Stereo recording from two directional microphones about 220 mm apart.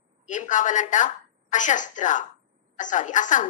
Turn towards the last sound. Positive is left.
turn(degrees=35)  # may be behind; listen again after turning